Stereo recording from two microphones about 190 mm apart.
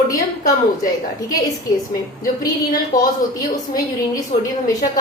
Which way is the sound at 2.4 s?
20° left (ahead or behind).